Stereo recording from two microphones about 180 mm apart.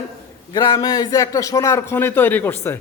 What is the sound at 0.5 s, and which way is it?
Speech, 25° left (ahead or behind).